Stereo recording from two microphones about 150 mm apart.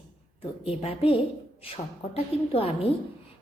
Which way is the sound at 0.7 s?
40° left (ahead or behind).